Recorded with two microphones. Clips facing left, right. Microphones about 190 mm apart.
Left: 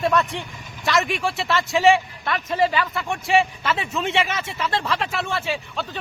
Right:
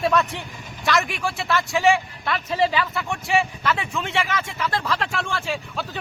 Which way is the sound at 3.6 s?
20° left (ahead or behind).